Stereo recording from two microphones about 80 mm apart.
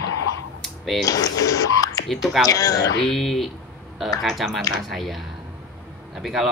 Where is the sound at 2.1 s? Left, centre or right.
Centre.